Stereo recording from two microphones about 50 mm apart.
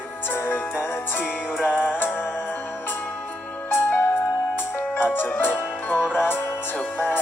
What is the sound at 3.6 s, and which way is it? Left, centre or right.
Music, left.